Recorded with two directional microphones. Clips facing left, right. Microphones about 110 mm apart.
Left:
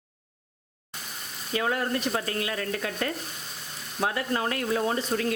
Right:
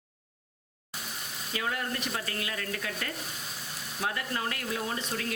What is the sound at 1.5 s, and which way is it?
A woman's voice, 35° left (ahead or behind).